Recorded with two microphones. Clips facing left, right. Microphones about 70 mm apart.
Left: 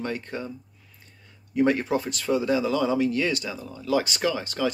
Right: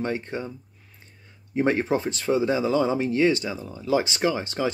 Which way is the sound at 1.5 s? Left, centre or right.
Right.